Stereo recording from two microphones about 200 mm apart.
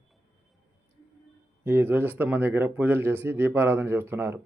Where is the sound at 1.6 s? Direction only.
10° right (ahead or behind).